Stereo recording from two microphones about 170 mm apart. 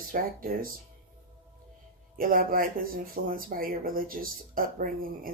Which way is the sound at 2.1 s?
55° right (ahead or behind).